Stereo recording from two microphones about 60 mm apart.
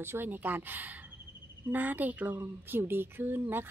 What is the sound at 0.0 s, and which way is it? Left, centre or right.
Speech, right.